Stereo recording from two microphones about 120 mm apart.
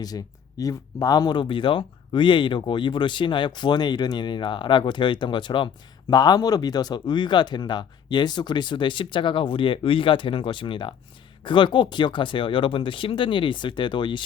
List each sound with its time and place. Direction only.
0.0 s speech: 30° left (ahead or behind)